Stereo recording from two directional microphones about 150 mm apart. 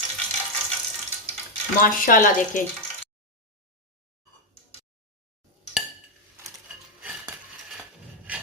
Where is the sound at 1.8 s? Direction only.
65° left (ahead or behind).